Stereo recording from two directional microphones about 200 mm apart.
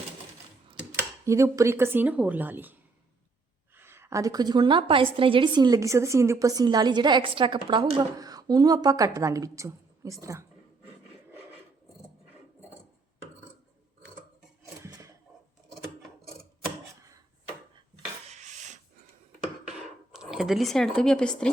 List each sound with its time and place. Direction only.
1.2 s speech: 15° right (ahead or behind)
3.8 s a woman's voice: 10° right (ahead or behind)
14.8 s a sound: 15° right (ahead or behind)
18.3 s filing: 35° right (ahead or behind)
20.1 s speech: centre (ahead or behind)